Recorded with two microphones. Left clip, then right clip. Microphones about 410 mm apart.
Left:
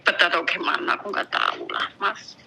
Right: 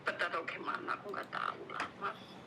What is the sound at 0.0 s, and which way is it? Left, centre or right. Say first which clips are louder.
A woman's voice: left 17 dB; left.